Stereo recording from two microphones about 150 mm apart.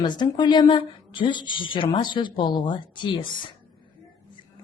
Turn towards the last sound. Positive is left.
turn(degrees=30)  # may be behind; listen again after turning